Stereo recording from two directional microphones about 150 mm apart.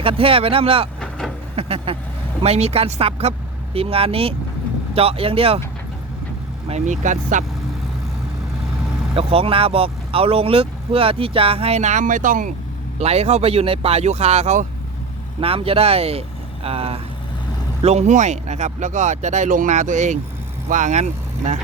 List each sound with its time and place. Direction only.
0.0 s speech: 40° right (ahead or behind)
1.5 s vehicle: 40° right (ahead or behind)
2.4 s speech: 45° right (ahead or behind)
6.7 s speech: 50° right (ahead or behind)
9.1 s speech: 40° right (ahead or behind); by 12.5 s 60° right (ahead or behind)
13.0 s speech: 45° right (ahead or behind)
15.4 s speech: 40° right (ahead or behind)